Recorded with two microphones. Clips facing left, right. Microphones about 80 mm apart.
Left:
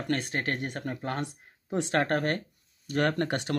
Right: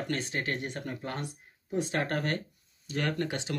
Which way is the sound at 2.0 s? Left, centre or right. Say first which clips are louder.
Left 4 dB; left.